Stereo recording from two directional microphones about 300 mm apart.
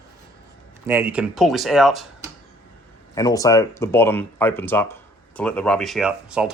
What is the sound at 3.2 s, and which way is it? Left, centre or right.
Speech, centre.